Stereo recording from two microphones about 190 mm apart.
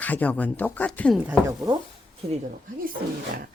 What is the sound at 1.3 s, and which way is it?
Speech, 20° right (ahead or behind).